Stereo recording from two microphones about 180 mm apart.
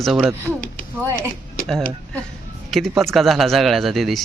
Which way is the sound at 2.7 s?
Centre (ahead or behind).